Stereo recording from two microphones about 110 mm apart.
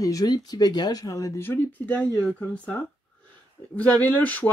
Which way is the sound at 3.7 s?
15° left (ahead or behind).